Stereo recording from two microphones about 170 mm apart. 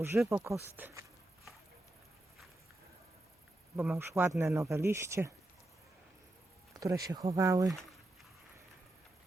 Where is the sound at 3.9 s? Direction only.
15° right (ahead or behind).